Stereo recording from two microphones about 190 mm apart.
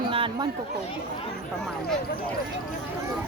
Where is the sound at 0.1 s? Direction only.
25° right (ahead or behind).